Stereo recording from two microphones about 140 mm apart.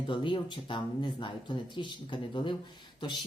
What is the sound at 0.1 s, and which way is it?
A woman's voice, 35° left (ahead or behind).